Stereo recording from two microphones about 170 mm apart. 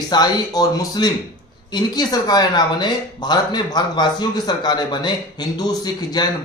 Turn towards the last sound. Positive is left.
turn(degrees=25)  # may be behind; listen again after turning